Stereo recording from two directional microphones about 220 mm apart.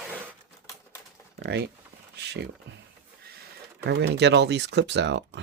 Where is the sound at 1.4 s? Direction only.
50° right (ahead or behind).